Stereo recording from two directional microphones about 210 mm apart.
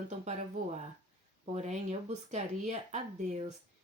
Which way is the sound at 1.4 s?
30° right (ahead or behind).